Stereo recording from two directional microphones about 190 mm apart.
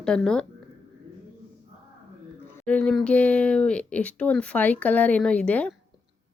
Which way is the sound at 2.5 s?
5° left (ahead or behind).